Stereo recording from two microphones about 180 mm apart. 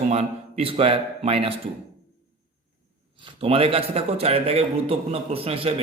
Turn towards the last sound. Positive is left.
turn(degrees=-30)  # may be behind; listen again after turning